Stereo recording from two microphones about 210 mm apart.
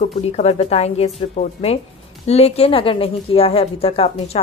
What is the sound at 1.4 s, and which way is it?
Speech, 45° left (ahead or behind).